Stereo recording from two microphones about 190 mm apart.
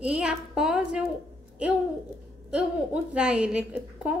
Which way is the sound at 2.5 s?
5° right (ahead or behind).